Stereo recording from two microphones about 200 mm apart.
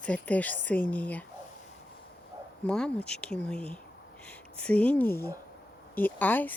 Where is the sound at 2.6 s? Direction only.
5° left (ahead or behind).